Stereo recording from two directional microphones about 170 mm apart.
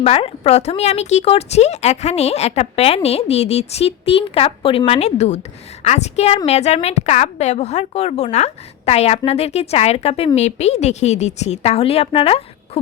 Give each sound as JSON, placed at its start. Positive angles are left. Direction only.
{"t": 0.0, "sound": "a woman's voice", "side_deg": 35}